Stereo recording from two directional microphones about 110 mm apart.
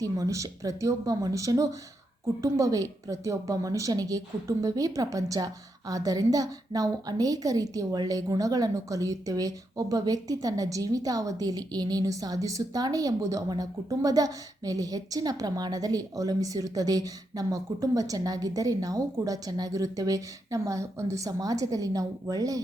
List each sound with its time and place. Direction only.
0.0 s a woman's voice: 30° right (ahead or behind)